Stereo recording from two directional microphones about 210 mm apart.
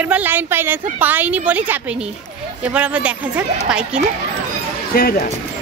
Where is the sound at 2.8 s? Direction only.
5° right (ahead or behind).